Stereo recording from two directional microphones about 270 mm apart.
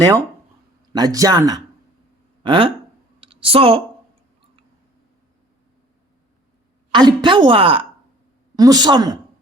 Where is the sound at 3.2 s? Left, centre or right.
Centre.